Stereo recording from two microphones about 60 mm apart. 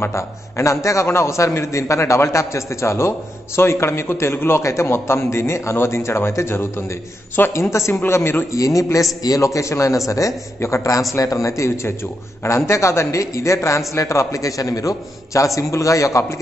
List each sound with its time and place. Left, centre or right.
0.1 s a man's voice: left
8.5 s a man's voice: left
9.2 s a man's voice: left